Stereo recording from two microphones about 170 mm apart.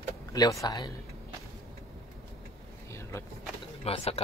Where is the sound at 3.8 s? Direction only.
35° left (ahead or behind).